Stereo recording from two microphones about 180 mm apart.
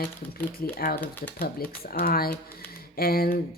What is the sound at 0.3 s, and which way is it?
Speech, 55° left (ahead or behind).